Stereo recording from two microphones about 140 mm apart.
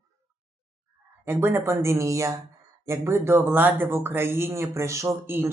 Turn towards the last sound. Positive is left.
turn(degrees=-15)  # may be behind; listen again after turning